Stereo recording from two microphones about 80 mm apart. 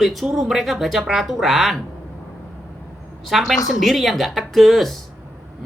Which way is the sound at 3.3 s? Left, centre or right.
Centre.